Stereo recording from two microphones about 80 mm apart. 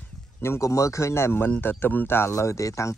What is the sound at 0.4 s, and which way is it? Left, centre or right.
Speech, left.